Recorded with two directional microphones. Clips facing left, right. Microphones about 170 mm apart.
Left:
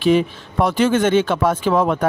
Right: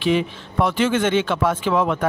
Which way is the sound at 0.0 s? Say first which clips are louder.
Left 4 dB; 40° left (ahead or behind).